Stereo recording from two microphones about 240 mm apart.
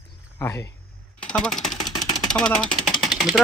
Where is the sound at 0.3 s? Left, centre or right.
Centre.